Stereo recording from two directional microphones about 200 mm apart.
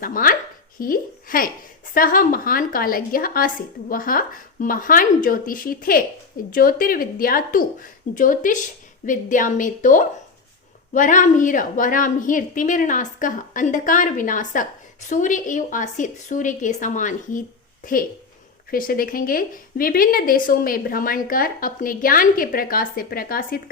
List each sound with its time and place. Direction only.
0.0 s a woman's voice: 45° left (ahead or behind)